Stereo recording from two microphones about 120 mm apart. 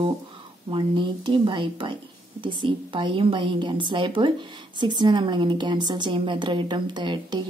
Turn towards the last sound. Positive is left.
turn(degrees=-40)  # may be behind; listen again after turning